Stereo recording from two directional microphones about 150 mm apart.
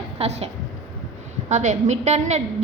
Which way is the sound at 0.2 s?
45° right (ahead or behind).